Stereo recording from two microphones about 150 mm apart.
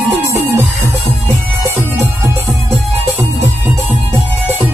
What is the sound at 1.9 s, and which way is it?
Music, 20° right (ahead or behind).